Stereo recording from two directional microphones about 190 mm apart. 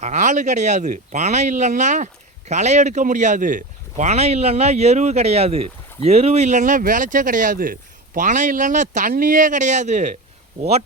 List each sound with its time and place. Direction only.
0.0 s speech: 40° right (ahead or behind)